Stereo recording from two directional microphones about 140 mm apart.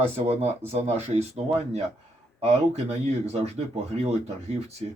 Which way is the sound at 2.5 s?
50° right (ahead or behind).